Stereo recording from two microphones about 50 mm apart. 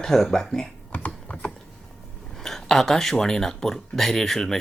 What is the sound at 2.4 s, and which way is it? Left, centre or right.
Speech, centre.